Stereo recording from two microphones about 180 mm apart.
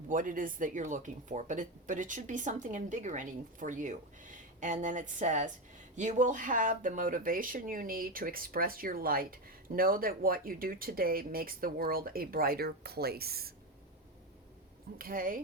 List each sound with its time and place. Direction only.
0.1 s speech: 50° right (ahead or behind)
14.9 s speech: 55° right (ahead or behind)